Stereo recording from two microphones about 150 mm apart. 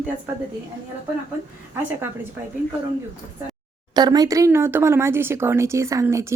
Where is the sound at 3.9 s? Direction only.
25° right (ahead or behind).